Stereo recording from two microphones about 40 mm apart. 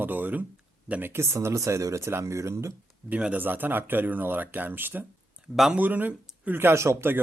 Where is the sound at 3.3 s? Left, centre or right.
Right.